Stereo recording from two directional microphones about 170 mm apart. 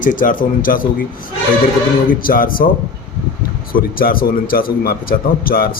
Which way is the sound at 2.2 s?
55° left (ahead or behind).